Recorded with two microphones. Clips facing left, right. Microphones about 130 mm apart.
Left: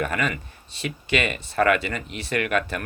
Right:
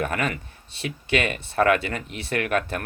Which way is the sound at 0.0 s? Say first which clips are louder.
Even; 55° right (ahead or behind).